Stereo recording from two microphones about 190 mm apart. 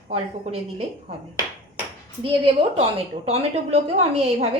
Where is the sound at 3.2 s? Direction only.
30° right (ahead or behind).